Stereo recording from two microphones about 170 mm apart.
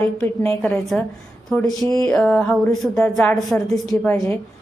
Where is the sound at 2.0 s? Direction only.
5° left (ahead or behind).